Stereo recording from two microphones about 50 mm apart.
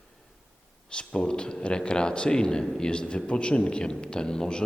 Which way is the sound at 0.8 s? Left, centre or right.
Left.